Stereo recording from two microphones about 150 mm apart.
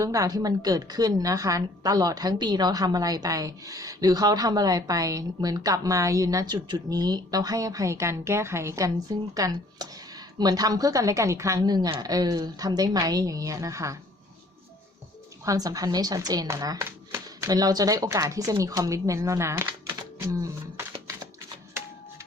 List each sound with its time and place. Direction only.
0.0 s a woman's voice: 20° right (ahead or behind)
15.4 s a woman's voice: 25° right (ahead or behind)